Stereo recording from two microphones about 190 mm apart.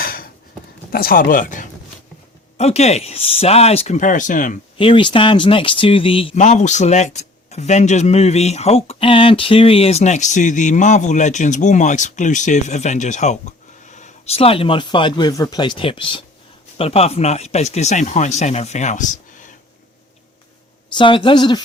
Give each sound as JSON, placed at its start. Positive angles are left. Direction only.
{"t": 0.0, "sound": "a sound", "side_deg": 50}
{"t": 0.9, "sound": "speech", "side_deg": 50}
{"t": 4.8, "sound": "speech", "side_deg": 25}
{"t": 20.9, "sound": "speech", "side_deg": 25}